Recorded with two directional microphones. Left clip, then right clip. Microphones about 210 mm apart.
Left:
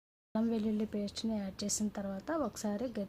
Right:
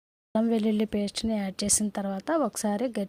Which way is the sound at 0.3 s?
35° right (ahead or behind).